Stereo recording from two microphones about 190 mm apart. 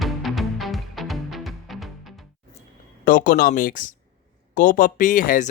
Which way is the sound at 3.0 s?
45° left (ahead or behind).